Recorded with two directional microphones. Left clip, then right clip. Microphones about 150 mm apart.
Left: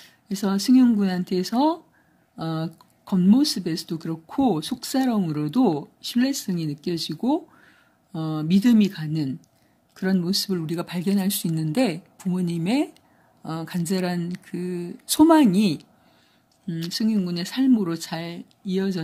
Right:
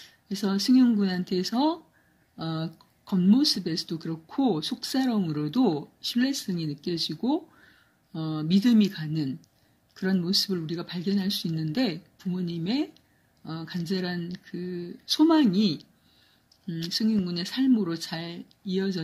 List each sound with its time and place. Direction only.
0.0 s speech: 50° left (ahead or behind)